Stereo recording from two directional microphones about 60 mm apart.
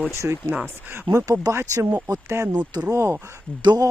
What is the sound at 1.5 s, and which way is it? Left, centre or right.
Speech, right.